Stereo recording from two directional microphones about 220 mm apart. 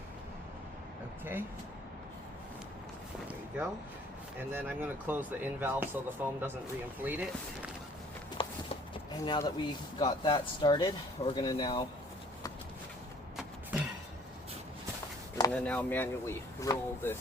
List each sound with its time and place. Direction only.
1.2 s speech: 10° right (ahead or behind)
4.4 s speech: 10° right (ahead or behind)
8.4 s walk: 25° left (ahead or behind)
9.2 s speech: 20° left (ahead or behind)
13.3 s a sound: 5° right (ahead or behind)
15.4 s speech: 5° left (ahead or behind)